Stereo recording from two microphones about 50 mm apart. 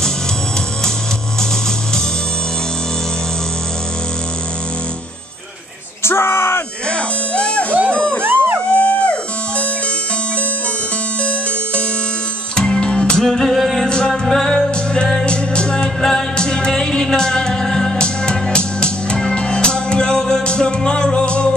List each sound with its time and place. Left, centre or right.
6.0 s a sound: left
6.9 s music: left
8.2 s music: right
8.6 s music: left
12.5 s music: centre
13.2 s music: centre
13.8 s music: centre